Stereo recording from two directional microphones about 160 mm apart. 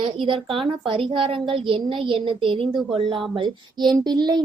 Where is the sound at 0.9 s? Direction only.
35° right (ahead or behind).